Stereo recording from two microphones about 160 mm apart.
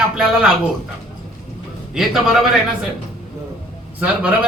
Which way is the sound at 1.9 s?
Centre (ahead or behind).